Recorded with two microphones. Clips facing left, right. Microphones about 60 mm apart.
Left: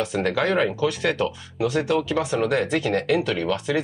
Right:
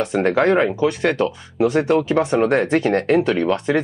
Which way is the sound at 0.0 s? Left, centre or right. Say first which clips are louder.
Right 6 dB; right.